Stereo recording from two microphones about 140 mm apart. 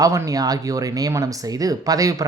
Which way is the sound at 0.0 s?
25° right (ahead or behind).